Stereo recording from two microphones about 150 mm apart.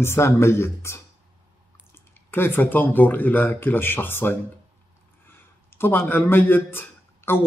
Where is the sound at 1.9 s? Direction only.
15° left (ahead or behind).